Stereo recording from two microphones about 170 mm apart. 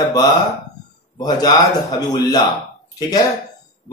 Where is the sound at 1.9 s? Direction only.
20° left (ahead or behind).